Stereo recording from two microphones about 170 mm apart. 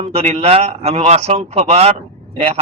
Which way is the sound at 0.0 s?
35° right (ahead or behind).